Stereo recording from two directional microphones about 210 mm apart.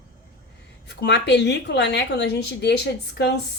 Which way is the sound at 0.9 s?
55° left (ahead or behind).